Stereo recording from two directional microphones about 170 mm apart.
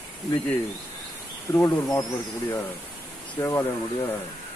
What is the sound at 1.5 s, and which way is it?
Speech, 15° left (ahead or behind).